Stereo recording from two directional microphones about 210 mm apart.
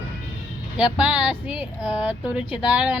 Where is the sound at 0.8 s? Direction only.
5° right (ahead or behind).